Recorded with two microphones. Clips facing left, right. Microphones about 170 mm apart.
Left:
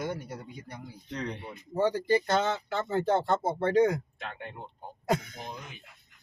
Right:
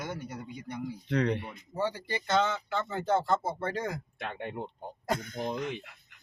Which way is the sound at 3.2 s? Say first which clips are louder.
Left 3 dB; 25° left (ahead or behind).